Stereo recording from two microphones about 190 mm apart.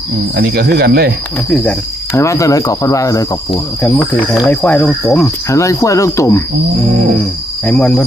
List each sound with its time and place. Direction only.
0.3 s speech: 55° right (ahead or behind)
1.5 s speech: 5° left (ahead or behind)
3.5 s speech: 5° left (ahead or behind)
7.6 s speech: 5° left (ahead or behind)